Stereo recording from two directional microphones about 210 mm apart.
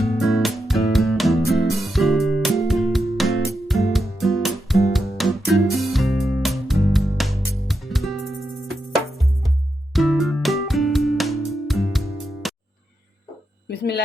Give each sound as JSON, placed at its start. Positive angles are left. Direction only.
{"t": 0.0, "sound": "music", "side_deg": 0}
{"t": 9.9, "sound": "music", "side_deg": 0}
{"t": 13.7, "sound": "a sound", "side_deg": 50}